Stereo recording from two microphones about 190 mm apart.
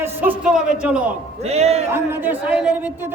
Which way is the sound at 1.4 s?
35° right (ahead or behind).